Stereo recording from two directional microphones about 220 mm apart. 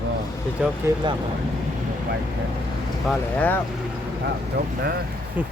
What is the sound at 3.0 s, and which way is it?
Speech, 5° left (ahead or behind).